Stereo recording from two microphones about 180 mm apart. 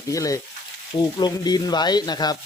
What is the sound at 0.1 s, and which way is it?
Speech, 20° left (ahead or behind).